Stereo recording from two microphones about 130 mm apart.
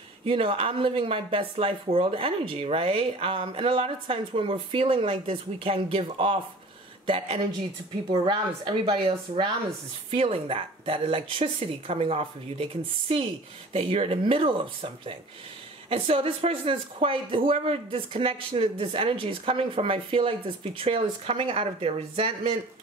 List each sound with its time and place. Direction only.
0.2 s speech: 45° right (ahead or behind)
13.7 s speech: 45° right (ahead or behind)